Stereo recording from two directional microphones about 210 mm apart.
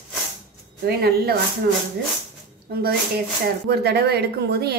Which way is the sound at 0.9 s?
45° right (ahead or behind).